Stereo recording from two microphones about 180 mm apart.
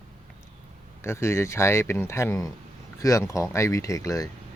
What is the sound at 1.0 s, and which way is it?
Speech, 15° left (ahead or behind).